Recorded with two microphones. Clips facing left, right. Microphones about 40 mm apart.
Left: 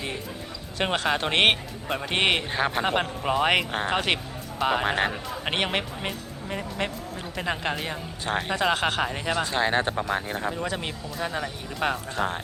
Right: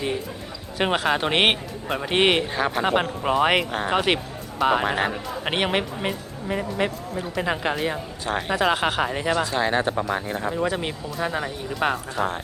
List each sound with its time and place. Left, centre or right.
0.8 s speech: centre
9.4 s speech: left
10.0 s speech: centre
10.4 s speech: centre